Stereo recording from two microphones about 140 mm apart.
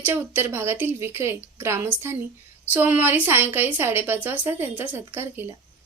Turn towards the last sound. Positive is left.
turn(degrees=-15)  # may be behind; listen again after turning